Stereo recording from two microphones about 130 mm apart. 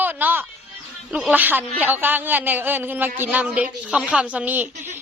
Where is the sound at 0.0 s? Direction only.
15° right (ahead or behind).